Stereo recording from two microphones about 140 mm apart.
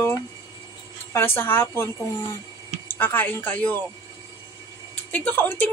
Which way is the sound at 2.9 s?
15° left (ahead or behind).